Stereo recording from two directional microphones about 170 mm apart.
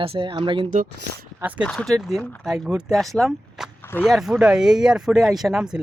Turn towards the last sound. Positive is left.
turn(degrees=-5)  # may be behind; listen again after turning